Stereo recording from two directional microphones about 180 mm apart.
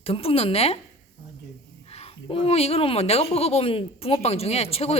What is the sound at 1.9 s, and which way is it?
Speech, 35° left (ahead or behind).